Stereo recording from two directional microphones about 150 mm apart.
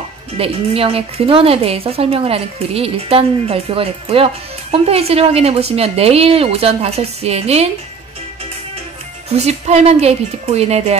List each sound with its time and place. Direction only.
0.4 s a woman's voice: 40° right (ahead or behind)
9.3 s speech: 45° right (ahead or behind)